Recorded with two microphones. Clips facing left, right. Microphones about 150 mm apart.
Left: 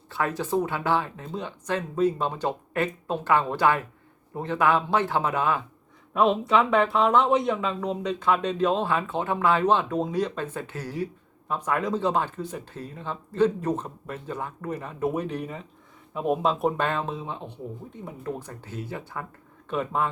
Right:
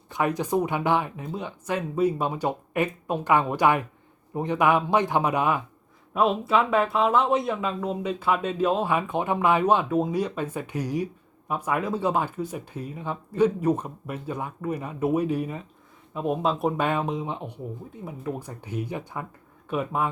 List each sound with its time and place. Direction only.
0.1 s speech: 15° right (ahead or behind)
6.1 s speech: 5° right (ahead or behind)
16.8 s speech: 15° right (ahead or behind)